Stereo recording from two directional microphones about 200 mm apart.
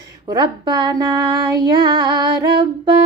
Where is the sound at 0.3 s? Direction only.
20° right (ahead or behind).